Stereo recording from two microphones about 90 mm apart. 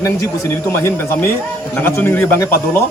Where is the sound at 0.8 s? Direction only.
30° left (ahead or behind).